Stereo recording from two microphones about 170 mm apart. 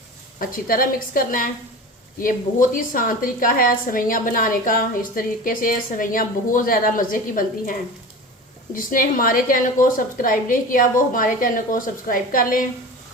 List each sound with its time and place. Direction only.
0.3 s a woman's voice: 55° left (ahead or behind)
2.6 s a woman's voice: 50° left (ahead or behind)